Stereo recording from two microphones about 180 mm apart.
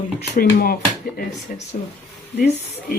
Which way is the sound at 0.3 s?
55° left (ahead or behind).